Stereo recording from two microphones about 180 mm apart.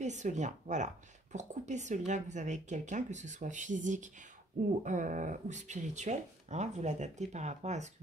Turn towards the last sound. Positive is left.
turn(degrees=-40)  # may be behind; listen again after turning